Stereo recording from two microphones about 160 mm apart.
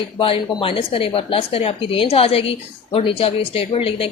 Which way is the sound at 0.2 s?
35° left (ahead or behind).